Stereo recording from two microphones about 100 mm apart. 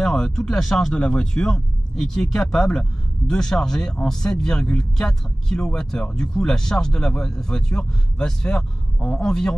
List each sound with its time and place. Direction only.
0.0 s speech: 5° left (ahead or behind)